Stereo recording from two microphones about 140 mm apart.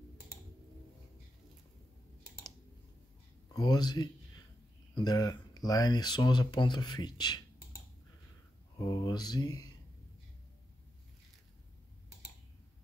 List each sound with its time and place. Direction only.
3.5 s speech: 30° left (ahead or behind)
8.7 s speech: 30° left (ahead or behind)